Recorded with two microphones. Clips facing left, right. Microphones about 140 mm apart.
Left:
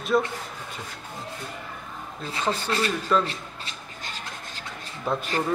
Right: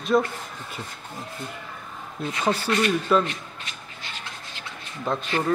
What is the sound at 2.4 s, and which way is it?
Speech, 10° right (ahead or behind).